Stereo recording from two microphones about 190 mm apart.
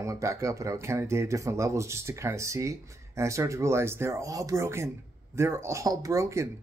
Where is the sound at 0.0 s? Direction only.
15° right (ahead or behind).